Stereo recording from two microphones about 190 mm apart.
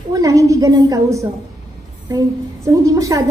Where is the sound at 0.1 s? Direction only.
15° right (ahead or behind).